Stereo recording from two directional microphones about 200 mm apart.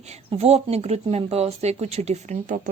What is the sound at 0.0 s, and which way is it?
A woman's voice, 30° right (ahead or behind).